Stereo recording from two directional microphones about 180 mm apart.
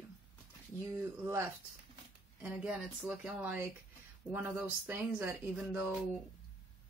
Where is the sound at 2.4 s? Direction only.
5° right (ahead or behind).